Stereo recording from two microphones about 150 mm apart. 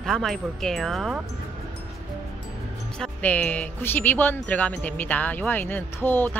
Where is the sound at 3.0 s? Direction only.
10° left (ahead or behind).